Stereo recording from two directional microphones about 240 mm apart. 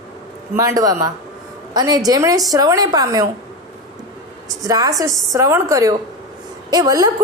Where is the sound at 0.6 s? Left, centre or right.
Centre.